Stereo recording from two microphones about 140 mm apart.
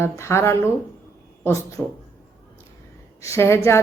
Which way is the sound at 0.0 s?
20° left (ahead or behind).